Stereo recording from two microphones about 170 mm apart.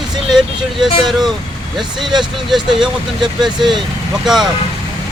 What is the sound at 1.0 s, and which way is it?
A man's voice, centre (ahead or behind).